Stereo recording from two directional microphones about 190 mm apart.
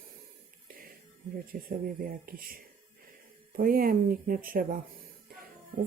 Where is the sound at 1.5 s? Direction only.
50° right (ahead or behind).